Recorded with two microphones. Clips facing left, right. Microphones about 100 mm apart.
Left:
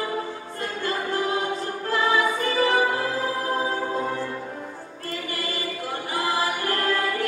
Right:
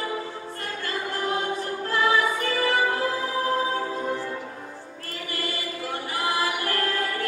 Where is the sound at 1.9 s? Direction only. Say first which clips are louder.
Left 1 dB; 20° left (ahead or behind).